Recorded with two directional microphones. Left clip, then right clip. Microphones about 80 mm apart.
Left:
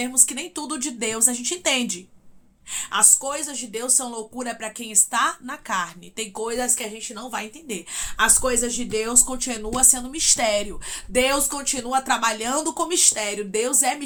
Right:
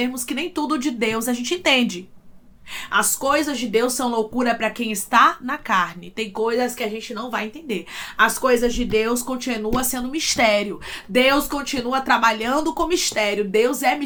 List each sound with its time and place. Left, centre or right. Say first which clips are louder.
0.0 s a woman's voice: even; left; by 2.0 s centre
2.7 s a woman's voice: right 1 dB; left
6.3 s speech: right 5 dB; left
6.8 s a woman's voice: right 6 dB; left
13.2 s a woman's voice: right 6 dB; left